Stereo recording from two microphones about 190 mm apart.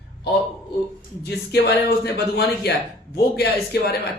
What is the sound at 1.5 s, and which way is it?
Speech, 60° left (ahead or behind).